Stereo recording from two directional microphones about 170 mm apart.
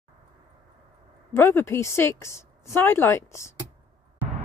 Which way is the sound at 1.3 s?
15° left (ahead or behind).